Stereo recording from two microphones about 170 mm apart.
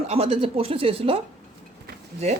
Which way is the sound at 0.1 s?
35° right (ahead or behind).